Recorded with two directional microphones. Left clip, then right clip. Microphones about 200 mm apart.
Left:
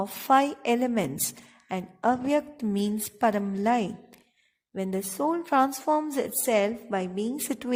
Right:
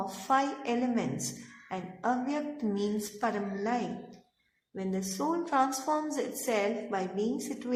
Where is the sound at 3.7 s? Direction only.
Centre (ahead or behind).